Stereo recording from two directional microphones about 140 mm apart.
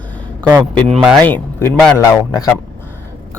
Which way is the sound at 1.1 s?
10° left (ahead or behind).